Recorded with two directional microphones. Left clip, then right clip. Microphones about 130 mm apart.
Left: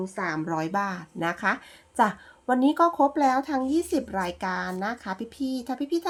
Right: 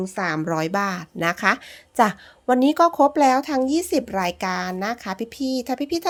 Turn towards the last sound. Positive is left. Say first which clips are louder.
# right 4 dB
turn(degrees=-35)  # may be behind; listen again after turning